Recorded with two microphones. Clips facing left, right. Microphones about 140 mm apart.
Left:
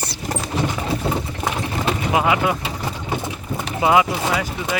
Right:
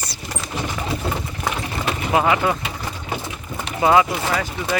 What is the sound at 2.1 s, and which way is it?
Speech, 10° left (ahead or behind).